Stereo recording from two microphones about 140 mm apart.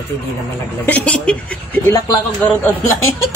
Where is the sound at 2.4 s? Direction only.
10° left (ahead or behind).